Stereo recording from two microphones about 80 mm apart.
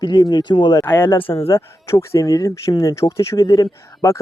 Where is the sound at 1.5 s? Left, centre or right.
Left.